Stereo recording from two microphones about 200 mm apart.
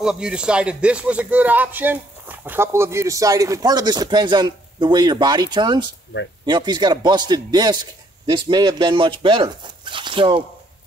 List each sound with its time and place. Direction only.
0.0 s a man's voice: 5° right (ahead or behind); by 10.4 s 25° right (ahead or behind)